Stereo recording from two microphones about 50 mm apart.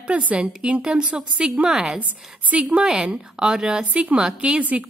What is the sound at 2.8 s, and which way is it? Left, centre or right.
A woman's voice, centre.